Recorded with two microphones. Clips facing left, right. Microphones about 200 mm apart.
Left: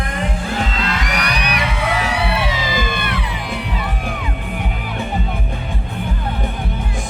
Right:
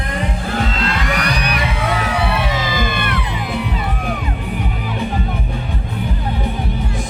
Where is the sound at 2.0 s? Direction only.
50° right (ahead or behind).